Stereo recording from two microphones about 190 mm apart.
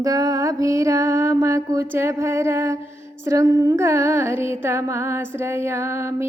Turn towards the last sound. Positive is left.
turn(degrees=-15)  # may be behind; listen again after turning